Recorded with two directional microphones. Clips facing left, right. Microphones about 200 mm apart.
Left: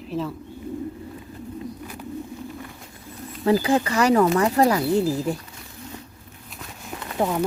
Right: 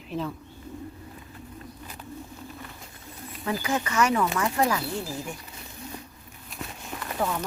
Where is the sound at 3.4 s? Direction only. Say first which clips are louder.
Left 9 dB; 30° left (ahead or behind).